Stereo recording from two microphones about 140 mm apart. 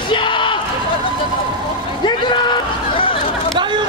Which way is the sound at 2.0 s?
35° left (ahead or behind).